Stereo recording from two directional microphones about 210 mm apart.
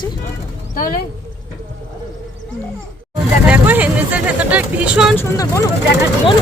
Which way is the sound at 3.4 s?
5° right (ahead or behind).